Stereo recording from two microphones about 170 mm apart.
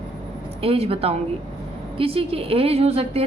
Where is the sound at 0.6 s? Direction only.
35° right (ahead or behind).